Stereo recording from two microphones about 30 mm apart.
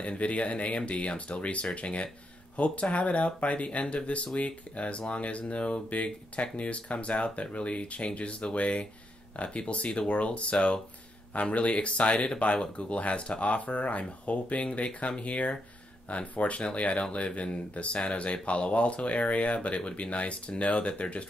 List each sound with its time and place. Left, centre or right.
0.0 s speech: left